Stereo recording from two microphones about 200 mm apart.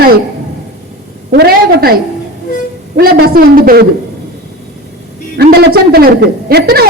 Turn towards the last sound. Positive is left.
turn(degrees=-50)  # may be behind; listen again after turning